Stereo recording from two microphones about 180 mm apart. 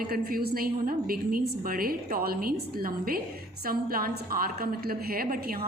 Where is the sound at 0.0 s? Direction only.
55° right (ahead or behind).